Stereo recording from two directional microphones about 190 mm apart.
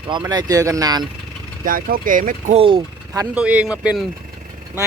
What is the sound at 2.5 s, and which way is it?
Speech, 25° right (ahead or behind).